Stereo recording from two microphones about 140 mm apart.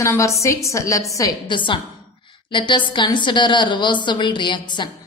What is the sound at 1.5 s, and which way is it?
A woman's voice, 35° left (ahead or behind).